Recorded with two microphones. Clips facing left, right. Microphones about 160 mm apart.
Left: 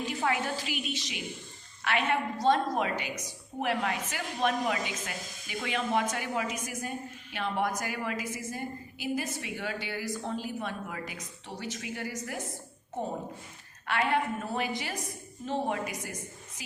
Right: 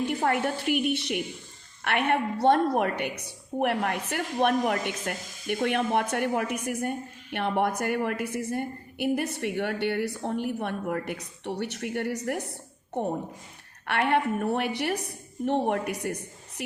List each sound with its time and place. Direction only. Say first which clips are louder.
0.3 s a woman's voice: right 4 dB; 60° right (ahead or behind)